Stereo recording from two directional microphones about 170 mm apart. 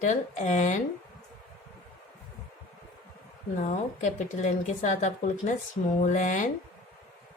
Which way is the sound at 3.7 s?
45° left (ahead or behind).